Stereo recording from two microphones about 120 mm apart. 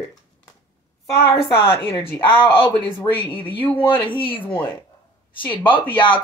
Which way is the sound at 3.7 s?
40° left (ahead or behind).